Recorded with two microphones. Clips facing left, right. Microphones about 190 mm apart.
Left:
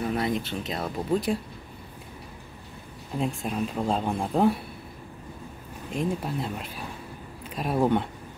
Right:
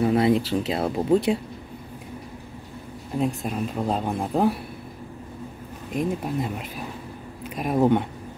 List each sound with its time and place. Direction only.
0.0 s speech: 30° right (ahead or behind)
3.2 s speech: 5° right (ahead or behind)
5.9 s speech: 5° right (ahead or behind)
7.4 s a sound: 5° right (ahead or behind)
7.7 s speech: 20° right (ahead or behind)